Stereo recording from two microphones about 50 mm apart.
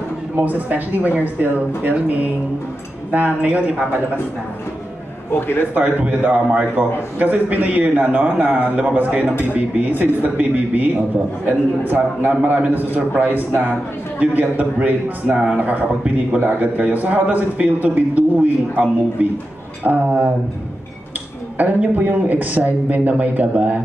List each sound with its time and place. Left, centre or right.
0.4 s a man's voice: right
5.3 s a man's voice: left
5.8 s a man's voice: right
21.5 s a man's voice: right